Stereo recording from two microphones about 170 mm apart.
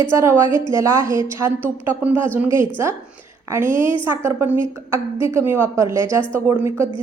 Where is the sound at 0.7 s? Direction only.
15° right (ahead or behind).